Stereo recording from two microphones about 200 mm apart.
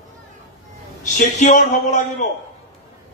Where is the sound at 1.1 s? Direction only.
45° left (ahead or behind).